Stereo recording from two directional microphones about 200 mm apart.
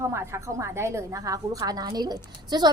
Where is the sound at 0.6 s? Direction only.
15° right (ahead or behind).